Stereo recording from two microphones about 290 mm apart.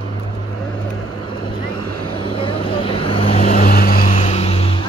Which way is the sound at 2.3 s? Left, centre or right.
Centre.